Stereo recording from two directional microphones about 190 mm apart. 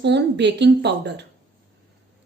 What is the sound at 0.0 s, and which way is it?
A woman's voice, 65° right (ahead or behind).